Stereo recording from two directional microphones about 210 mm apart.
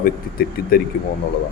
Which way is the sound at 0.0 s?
45° left (ahead or behind).